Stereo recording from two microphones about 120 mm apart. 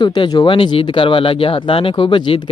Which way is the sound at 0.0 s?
40° left (ahead or behind).